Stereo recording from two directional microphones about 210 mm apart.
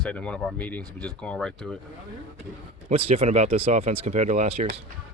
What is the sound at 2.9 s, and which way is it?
Speech, 30° right (ahead or behind).